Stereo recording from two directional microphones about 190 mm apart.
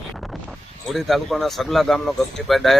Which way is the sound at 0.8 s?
Centre (ahead or behind).